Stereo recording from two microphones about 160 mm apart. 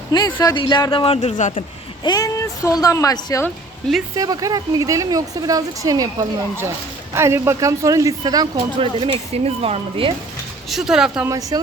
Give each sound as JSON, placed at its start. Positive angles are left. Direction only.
{"t": 0.1, "sound": "speech", "side_deg": 25}
{"t": 2.0, "sound": "speech", "side_deg": 20}
{"t": 3.4, "sound": "a woman's voice", "side_deg": 0}
{"t": 4.1, "sound": "speech", "side_deg": -20}
{"t": 10.7, "sound": "speech", "side_deg": -5}
{"t": 11.3, "sound": "speech", "side_deg": -20}